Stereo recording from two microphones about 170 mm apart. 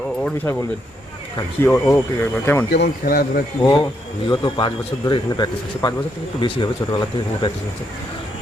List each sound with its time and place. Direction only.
1.4 s speech: 15° left (ahead or behind)
2.7 s a man's voice: 65° left (ahead or behind)
3.6 s speech: 25° left (ahead or behind)